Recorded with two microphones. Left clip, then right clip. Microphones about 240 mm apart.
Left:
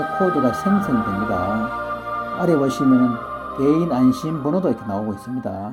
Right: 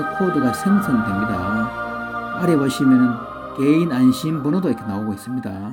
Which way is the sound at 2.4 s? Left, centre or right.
Right.